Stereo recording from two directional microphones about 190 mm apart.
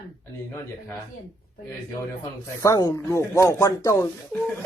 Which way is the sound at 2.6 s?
15° left (ahead or behind).